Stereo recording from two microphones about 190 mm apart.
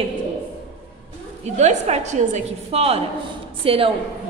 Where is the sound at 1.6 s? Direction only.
35° right (ahead or behind).